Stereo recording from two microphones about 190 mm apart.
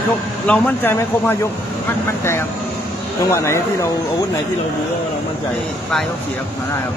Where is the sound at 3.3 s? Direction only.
15° left (ahead or behind).